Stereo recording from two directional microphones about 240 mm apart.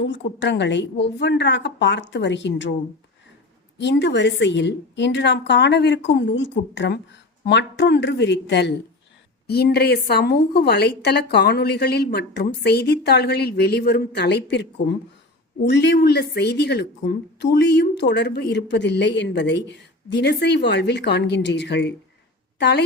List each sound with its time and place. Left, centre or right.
0.0 s a woman's voice: left
3.8 s a woman's voice: left